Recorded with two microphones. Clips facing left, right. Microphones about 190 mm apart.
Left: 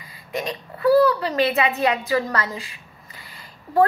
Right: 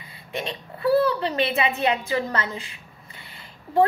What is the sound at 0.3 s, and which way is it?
A woman's voice, 30° right (ahead or behind).